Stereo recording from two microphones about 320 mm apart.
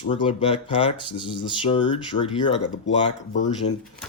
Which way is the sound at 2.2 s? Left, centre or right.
Centre.